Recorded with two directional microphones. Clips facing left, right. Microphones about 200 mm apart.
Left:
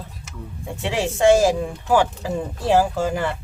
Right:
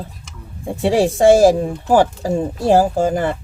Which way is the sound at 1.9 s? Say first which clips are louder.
Right 5 dB; 40° right (ahead or behind).